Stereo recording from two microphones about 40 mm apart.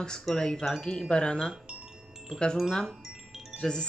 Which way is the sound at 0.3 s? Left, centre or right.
Centre.